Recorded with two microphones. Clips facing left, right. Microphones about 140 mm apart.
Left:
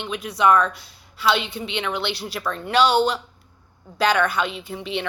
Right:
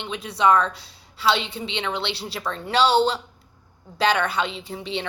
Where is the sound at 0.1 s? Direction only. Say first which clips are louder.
Left 1 dB; 30° right (ahead or behind).